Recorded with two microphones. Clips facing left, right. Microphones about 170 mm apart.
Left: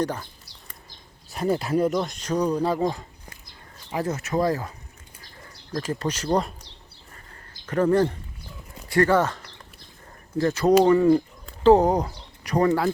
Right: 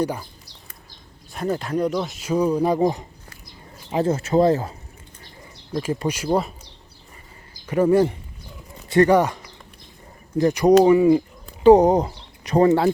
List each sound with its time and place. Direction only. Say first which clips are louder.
0.0 s speech: right 2 dB; 10° right (ahead or behind)
1.3 s speech: left 1 dB; 5° left (ahead or behind); by 4.7 s 25° right (ahead or behind)
5.7 s speech: right 3 dB; 10° right (ahead or behind)
7.5 s speech: right 3 dB; 10° right (ahead or behind); by 12.9 s 25° right (ahead or behind)